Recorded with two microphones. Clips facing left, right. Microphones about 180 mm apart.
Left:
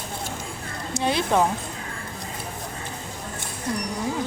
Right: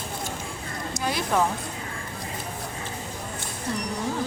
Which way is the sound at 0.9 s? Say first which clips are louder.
Left 4 dB; 25° left (ahead or behind).